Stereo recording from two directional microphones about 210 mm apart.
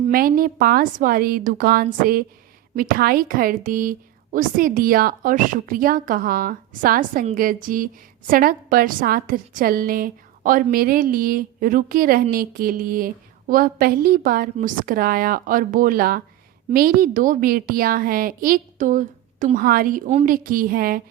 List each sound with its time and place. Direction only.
0.0 s a woman's voice: 45° right (ahead or behind)